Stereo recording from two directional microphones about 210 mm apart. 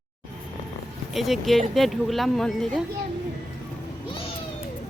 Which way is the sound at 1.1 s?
Centre (ahead or behind).